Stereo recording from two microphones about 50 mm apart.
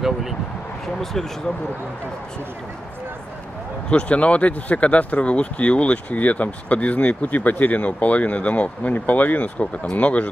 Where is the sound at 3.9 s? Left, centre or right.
Left.